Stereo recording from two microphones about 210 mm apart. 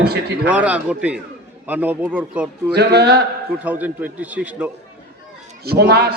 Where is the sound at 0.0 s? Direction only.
50° right (ahead or behind).